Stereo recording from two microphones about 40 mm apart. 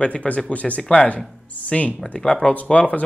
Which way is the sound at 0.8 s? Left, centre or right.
Centre.